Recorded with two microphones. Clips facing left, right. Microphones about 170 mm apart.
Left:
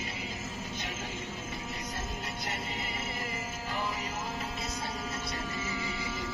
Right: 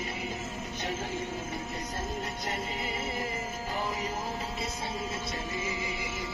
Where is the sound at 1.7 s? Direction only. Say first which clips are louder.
Right 3 dB; 35° right (ahead or behind).